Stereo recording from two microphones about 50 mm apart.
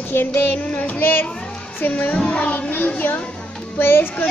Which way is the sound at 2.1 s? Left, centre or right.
Left.